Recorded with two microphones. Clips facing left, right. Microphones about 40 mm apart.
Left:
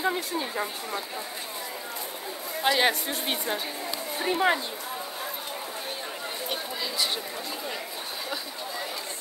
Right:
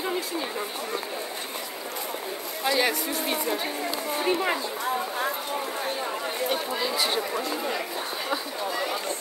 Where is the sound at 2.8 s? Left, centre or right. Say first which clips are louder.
Even; left.